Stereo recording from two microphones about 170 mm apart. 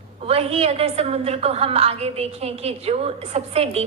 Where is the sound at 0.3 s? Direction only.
35° right (ahead or behind).